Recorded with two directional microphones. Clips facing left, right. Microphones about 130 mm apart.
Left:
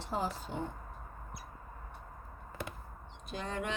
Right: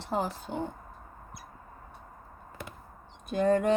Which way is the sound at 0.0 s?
65° right (ahead or behind).